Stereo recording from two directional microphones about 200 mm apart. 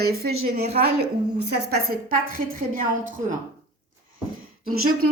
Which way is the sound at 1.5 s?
55° right (ahead or behind).